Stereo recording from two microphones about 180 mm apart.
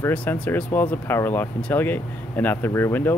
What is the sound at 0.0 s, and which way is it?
Speech, 10° left (ahead or behind).